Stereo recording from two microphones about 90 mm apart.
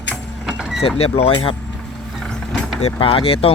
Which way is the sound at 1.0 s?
85° left.